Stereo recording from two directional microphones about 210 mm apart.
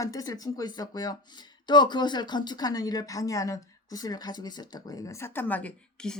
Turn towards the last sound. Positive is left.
turn(degrees=5)  # may be behind; listen again after turning